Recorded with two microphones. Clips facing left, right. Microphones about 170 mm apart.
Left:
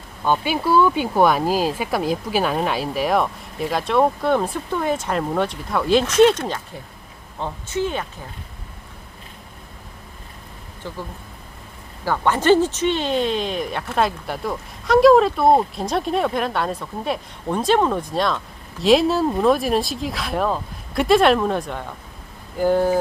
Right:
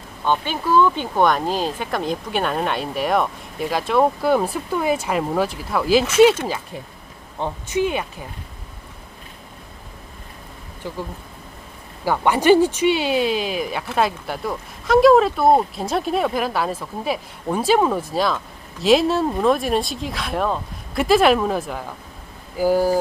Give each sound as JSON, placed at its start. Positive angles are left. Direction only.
{"t": 0.3, "sound": "speech", "side_deg": 10}
{"t": 7.3, "sound": "speech", "side_deg": -15}
{"t": 10.8, "sound": "speech", "side_deg": -15}
{"t": 12.0, "sound": "speech", "side_deg": -10}